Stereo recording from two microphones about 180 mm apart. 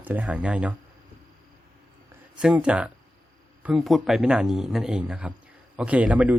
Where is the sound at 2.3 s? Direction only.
5° right (ahead or behind).